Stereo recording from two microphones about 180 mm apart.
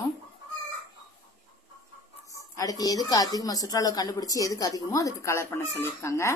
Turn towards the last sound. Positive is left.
turn(degrees=15)  # may be behind; listen again after turning